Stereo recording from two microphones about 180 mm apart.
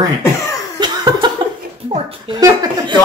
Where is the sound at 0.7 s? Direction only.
25° right (ahead or behind).